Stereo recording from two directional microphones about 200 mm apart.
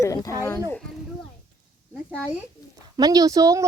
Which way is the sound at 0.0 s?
15° left (ahead or behind).